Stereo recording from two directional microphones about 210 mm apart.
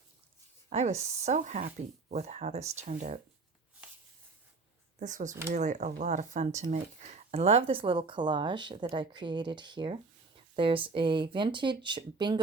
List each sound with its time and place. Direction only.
0.7 s speech: 30° right (ahead or behind)
4.9 s speech: 35° right (ahead or behind); by 12.4 s 20° right (ahead or behind)